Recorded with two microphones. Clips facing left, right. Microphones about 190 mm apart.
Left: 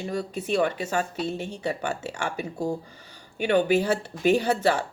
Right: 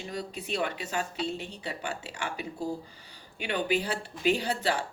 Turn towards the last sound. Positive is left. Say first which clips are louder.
# left 6 dB
turn(degrees=50)  # may be behind; listen again after turning